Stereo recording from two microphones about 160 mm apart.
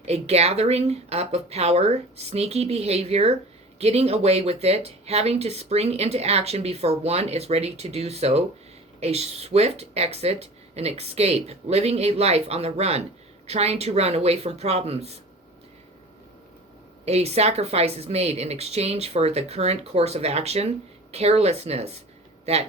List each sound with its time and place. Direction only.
0.0 s speech: 40° right (ahead or behind)
17.1 s speech: 40° right (ahead or behind)